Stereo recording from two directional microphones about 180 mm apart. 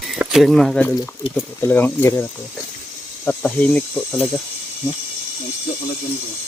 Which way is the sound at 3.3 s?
5° left (ahead or behind).